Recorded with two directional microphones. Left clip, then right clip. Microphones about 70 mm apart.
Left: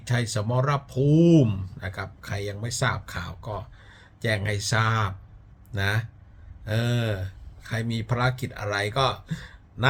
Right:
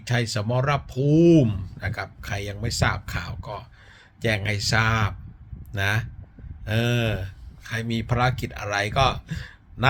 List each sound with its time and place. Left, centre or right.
0.0 s speech: left
1.8 s speech: centre; by 5.1 s left
5.7 s speech: left